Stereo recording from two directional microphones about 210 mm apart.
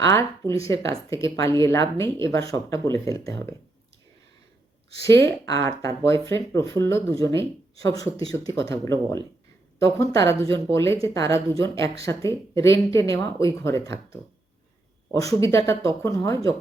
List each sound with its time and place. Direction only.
0.0 s speech: 15° left (ahead or behind)
5.0 s speech: 15° left (ahead or behind)
15.2 s speech: 15° left (ahead or behind)